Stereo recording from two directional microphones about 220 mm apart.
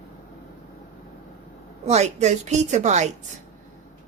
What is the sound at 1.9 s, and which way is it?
Speech, 30° right (ahead or behind).